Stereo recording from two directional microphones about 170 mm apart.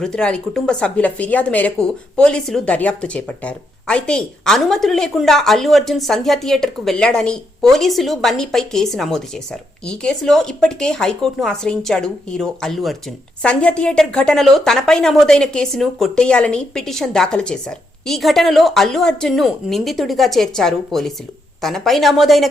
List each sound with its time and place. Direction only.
0.0 s a woman's voice: 5° left (ahead or behind)